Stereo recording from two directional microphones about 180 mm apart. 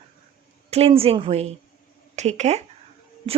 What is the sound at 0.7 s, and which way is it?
A woman's voice, 35° right (ahead or behind).